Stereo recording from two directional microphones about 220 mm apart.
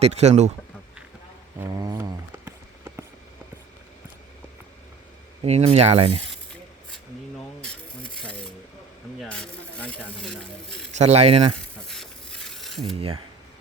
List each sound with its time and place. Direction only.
0.0 s speech: 30° right (ahead or behind)
1.5 s a sound: 15° right (ahead or behind)
5.4 s speech: 30° right (ahead or behind)
7.6 s a sound: 5° left (ahead or behind)
9.2 s speech: 5° left (ahead or behind)
10.9 s speech: 30° right (ahead or behind)
11.6 s stir: 5° left (ahead or behind)